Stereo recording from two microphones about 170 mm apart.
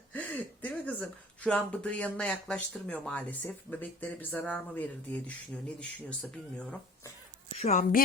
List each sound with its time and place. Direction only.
0.1 s speech: 10° left (ahead or behind)
7.5 s a woman's voice: 40° left (ahead or behind)